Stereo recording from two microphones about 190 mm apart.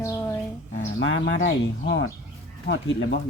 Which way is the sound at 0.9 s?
75° left (ahead or behind).